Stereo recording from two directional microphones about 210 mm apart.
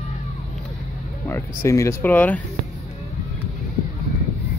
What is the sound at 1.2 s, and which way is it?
Speech, 15° left (ahead or behind).